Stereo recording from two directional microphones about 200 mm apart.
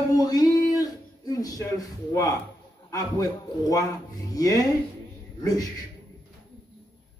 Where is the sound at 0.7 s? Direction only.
20° left (ahead or behind).